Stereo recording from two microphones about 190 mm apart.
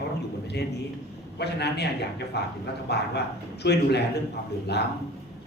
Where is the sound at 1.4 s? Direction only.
60° left (ahead or behind).